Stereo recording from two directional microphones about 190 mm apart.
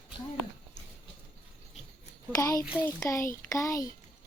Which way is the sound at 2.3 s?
15° left (ahead or behind).